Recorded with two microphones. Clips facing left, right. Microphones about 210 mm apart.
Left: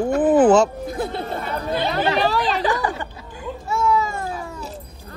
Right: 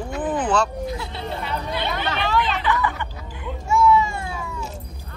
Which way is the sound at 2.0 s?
35° left (ahead or behind).